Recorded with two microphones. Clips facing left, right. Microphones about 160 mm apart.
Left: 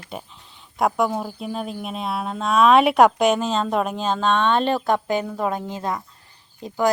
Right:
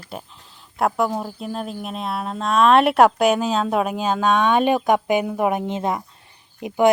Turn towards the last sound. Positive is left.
turn(degrees=-20)  # may be behind; listen again after turning